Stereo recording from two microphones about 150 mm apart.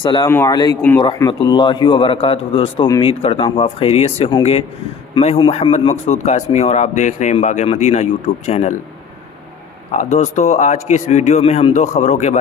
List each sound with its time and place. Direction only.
0.0 s a man's voice: 30° left (ahead or behind)
0.3 s a man's voice: 15° left (ahead or behind)
0.9 s a man's voice: 30° left (ahead or behind); by 8.7 s 50° left (ahead or behind)
10.0 s speech: 50° left (ahead or behind)